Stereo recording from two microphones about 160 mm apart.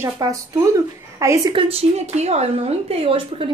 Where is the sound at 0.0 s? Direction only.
20° right (ahead or behind).